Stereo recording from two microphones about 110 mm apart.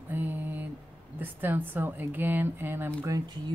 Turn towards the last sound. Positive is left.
turn(degrees=-25)  # may be behind; listen again after turning